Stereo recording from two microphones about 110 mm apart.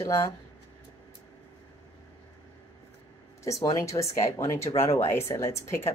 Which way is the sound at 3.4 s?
30° left (ahead or behind).